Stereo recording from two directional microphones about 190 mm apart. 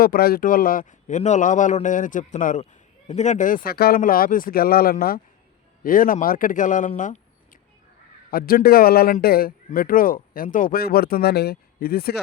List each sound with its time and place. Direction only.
0.0 s a man's voice: 50° left (ahead or behind)